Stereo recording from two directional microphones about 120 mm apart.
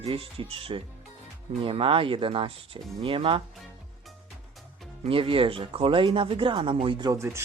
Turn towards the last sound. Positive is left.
turn(degrees=-20)  # may be behind; listen again after turning